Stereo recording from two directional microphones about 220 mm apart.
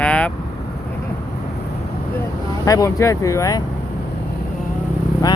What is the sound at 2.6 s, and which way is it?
Speech, 15° left (ahead or behind).